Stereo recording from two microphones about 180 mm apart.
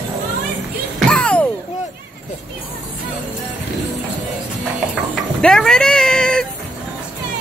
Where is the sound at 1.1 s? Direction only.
5° left (ahead or behind).